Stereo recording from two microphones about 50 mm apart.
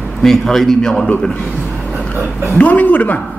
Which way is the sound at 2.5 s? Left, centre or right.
Left.